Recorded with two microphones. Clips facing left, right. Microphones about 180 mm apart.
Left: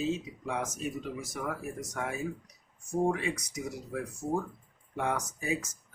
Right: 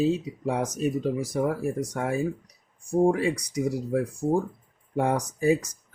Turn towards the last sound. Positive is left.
turn(degrees=-35)  # may be behind; listen again after turning